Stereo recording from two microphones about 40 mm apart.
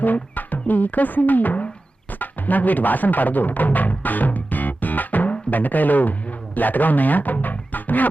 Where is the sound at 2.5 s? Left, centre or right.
Left.